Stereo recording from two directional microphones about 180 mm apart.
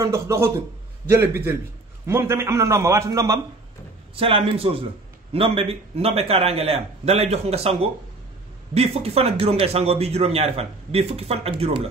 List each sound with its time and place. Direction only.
0.0 s a man's voice: 15° right (ahead or behind)
4.1 s speech: 30° right (ahead or behind)